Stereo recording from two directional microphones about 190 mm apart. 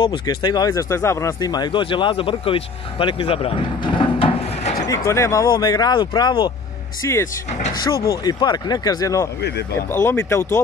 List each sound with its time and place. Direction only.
0.0 s speech: 25° left (ahead or behind)
4.8 s speech: 15° left (ahead or behind)